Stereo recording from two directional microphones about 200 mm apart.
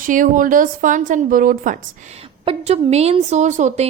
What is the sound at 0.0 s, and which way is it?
A woman's voice, 40° right (ahead or behind).